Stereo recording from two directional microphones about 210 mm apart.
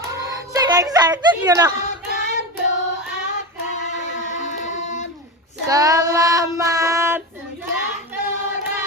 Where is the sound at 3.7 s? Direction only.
35° left (ahead or behind).